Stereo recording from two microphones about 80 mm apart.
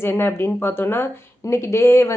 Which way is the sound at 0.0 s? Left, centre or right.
Left.